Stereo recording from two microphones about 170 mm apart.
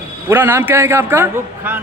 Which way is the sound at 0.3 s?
15° right (ahead or behind).